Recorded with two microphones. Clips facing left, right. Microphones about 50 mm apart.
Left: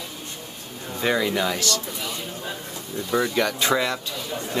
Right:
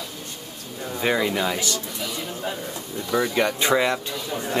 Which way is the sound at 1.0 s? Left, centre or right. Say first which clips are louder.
Even; centre.